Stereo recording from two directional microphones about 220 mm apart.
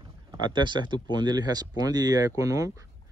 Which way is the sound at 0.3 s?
20° right (ahead or behind).